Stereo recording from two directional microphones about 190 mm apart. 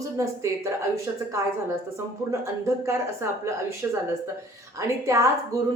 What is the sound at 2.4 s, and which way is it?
A woman's voice, 15° right (ahead or behind).